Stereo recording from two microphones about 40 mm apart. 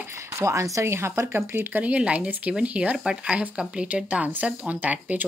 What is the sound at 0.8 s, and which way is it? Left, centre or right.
Speech, right.